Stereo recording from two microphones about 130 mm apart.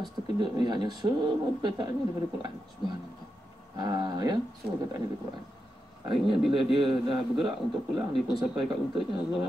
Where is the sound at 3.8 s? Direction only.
30° right (ahead or behind).